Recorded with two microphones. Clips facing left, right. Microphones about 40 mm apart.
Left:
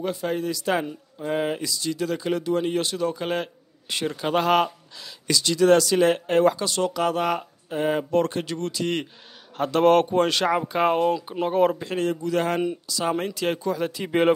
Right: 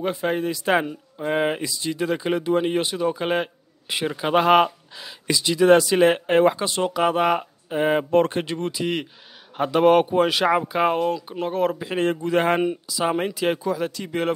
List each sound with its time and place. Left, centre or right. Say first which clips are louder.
0.0 s speech: right 3 dB; right; by 11.9 s centre
12.0 s speech: right 4 dB; right
12.8 s speech: right 2 dB; centre
13.9 s speech: left 4 dB; centre